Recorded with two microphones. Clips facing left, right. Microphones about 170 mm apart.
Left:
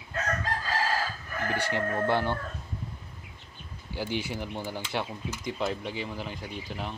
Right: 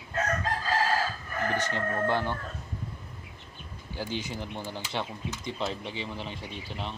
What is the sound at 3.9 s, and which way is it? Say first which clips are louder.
Speech: left 2 dB; 15° left (ahead or behind).